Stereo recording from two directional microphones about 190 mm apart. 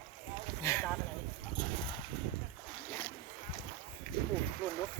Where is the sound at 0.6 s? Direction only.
15° left (ahead or behind).